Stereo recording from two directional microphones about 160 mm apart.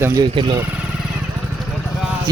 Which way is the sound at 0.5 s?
10° right (ahead or behind).